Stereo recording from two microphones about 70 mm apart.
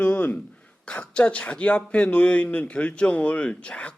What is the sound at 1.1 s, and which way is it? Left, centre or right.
Speech, centre.